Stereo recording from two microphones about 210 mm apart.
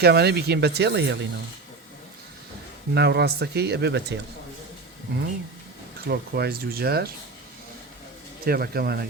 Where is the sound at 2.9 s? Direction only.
50° right (ahead or behind).